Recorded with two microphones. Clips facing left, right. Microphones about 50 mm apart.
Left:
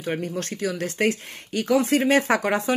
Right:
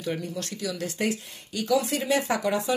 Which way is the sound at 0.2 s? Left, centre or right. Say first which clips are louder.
Left 5 dB; left.